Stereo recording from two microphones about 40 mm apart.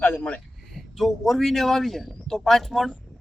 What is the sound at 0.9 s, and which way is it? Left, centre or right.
A man's voice, centre.